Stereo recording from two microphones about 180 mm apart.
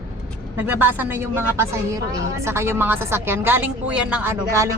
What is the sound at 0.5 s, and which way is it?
A woman's voice, 10° right (ahead or behind).